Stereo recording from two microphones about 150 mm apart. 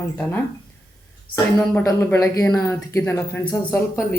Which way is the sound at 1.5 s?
10° left (ahead or behind).